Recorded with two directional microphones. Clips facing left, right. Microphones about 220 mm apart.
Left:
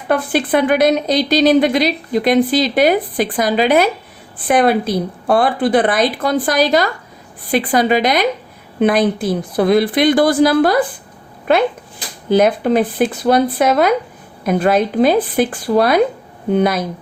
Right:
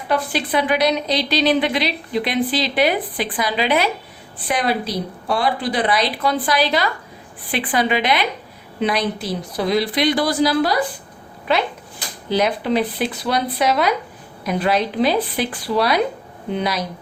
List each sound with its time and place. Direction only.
0.1 s a woman's voice: 50° left (ahead or behind)